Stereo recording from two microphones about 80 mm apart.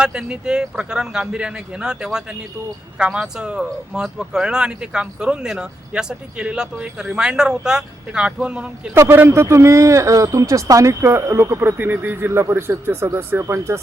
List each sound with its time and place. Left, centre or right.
0.0 s speech: centre
9.0 s a man's voice: right
11.8 s a man's voice: right